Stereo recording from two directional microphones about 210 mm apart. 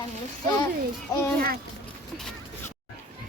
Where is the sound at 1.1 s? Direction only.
15° left (ahead or behind).